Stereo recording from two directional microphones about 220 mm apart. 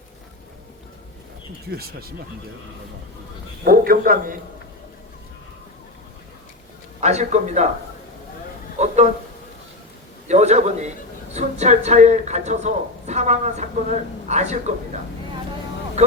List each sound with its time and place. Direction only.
1.7 s speech: 45° right (ahead or behind)
3.6 s a man's voice: 40° right (ahead or behind)
7.0 s a man's voice: 30° right (ahead or behind)
8.8 s speech: 30° right (ahead or behind)
10.2 s a man's voice: 30° right (ahead or behind)